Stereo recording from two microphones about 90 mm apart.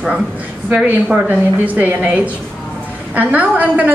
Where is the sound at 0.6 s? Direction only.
20° right (ahead or behind).